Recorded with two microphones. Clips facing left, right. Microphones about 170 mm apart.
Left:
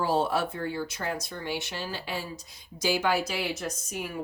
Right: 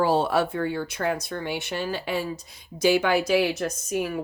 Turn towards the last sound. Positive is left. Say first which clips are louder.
# right 8 dB
turn(degrees=-65)  # may be behind; listen again after turning